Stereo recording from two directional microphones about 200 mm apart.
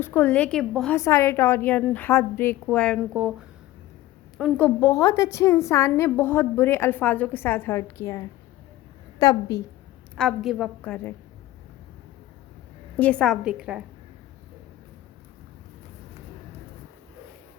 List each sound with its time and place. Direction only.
0.0 s a woman's voice: 10° left (ahead or behind)
0.9 s a woman's voice: 15° left (ahead or behind); by 4.6 s 5° right (ahead or behind)
4.6 s a woman's voice: 15° left (ahead or behind)
10.2 s a woman's voice: centre (ahead or behind)
13.0 s a woman's voice: 5° left (ahead or behind)